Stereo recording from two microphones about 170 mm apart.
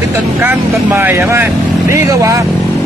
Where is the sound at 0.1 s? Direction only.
15° right (ahead or behind).